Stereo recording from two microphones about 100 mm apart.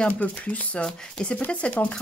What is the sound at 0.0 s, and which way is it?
Speech, 15° left (ahead or behind).